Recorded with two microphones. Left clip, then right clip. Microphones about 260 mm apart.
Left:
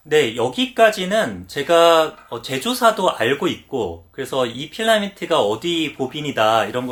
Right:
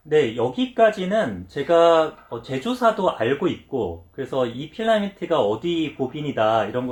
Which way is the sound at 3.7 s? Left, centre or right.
Right.